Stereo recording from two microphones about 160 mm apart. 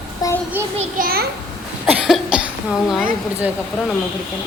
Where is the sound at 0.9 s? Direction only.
70° right (ahead or behind).